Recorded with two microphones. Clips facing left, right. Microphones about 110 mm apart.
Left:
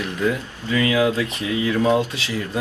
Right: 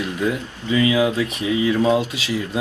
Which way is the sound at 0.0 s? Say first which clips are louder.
Even; 20° right (ahead or behind).